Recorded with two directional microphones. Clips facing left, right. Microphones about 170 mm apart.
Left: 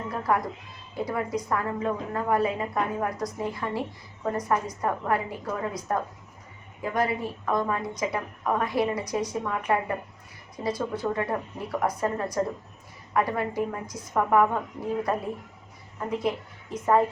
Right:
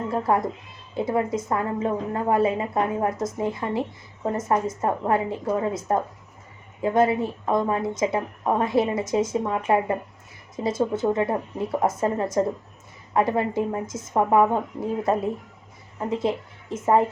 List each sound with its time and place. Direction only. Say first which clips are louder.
0.1 s a woman's voice: right 3 dB; 25° right (ahead or behind)